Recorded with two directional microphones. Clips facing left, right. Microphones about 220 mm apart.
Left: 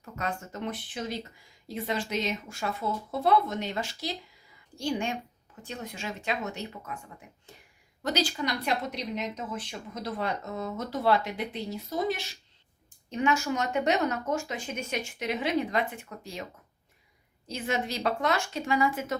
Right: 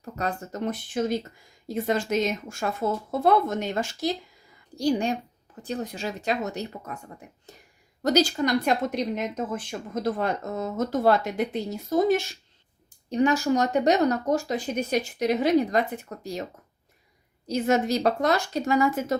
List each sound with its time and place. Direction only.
0.0 s speech: 35° right (ahead or behind)
13.1 s speech: 35° right (ahead or behind)